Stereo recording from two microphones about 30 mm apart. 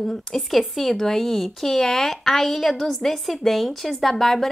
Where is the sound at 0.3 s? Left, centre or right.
Centre.